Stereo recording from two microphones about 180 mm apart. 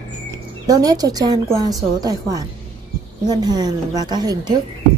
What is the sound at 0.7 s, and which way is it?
Speech, 20° right (ahead or behind).